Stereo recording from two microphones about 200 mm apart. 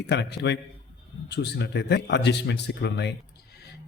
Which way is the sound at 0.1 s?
60° left (ahead or behind).